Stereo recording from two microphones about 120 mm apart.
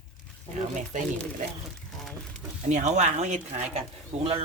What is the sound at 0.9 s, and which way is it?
Speech, 90° right.